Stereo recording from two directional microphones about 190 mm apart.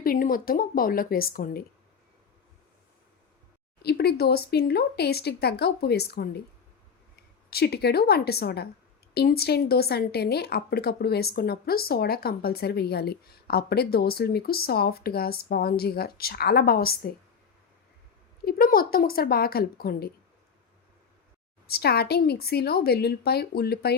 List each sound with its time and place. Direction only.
0.0 s speech: 50° left (ahead or behind)
3.8 s a woman's voice: 55° left (ahead or behind)
7.5 s a woman's voice: 55° left (ahead or behind)
18.4 s speech: 50° left (ahead or behind)
21.7 s a woman's voice: 55° left (ahead or behind)